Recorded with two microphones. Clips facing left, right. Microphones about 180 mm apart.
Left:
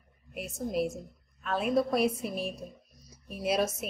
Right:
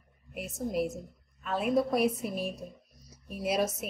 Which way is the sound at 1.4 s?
10° right (ahead or behind).